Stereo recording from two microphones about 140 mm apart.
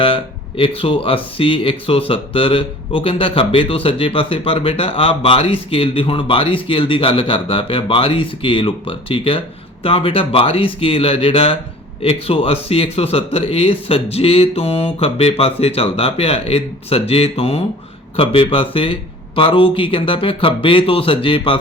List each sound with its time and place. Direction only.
0.0 s a man's voice: 40° left (ahead or behind)